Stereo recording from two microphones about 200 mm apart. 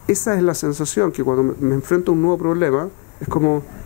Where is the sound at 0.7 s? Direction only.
10° left (ahead or behind).